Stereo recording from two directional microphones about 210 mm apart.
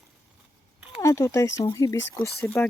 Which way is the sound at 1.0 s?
15° left (ahead or behind).